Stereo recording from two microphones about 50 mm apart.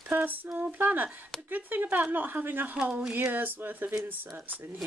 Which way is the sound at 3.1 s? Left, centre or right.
Right.